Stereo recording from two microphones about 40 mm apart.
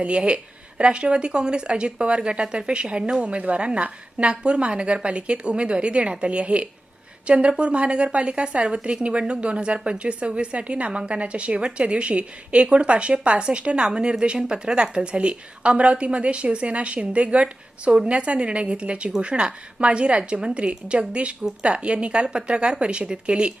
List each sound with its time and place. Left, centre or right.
0.0 s a woman's voice: right
3.2 s a woman's voice: right